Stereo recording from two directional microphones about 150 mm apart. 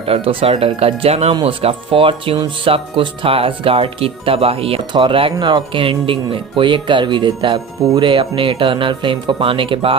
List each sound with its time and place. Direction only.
0.1 s speech: 40° right (ahead or behind)